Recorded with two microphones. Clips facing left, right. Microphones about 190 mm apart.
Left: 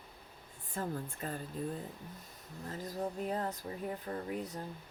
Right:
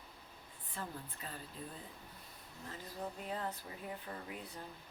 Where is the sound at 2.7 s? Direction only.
40° left (ahead or behind).